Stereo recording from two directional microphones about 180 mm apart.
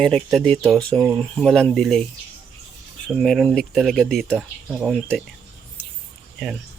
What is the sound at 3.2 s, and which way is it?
Speech, centre (ahead or behind).